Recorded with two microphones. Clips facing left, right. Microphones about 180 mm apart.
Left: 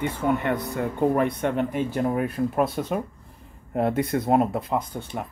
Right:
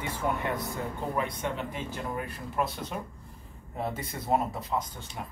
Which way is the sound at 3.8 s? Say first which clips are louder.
Left 11 dB; 60° left (ahead or behind).